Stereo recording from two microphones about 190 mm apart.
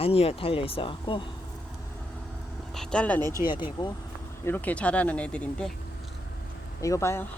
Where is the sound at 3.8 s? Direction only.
25° left (ahead or behind).